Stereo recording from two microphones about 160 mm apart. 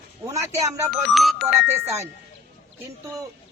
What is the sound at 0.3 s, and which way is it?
Speech, 20° right (ahead or behind).